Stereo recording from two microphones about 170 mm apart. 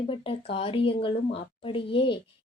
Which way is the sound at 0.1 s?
35° left (ahead or behind).